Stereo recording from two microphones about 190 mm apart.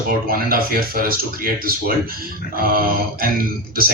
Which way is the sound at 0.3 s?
50° right (ahead or behind).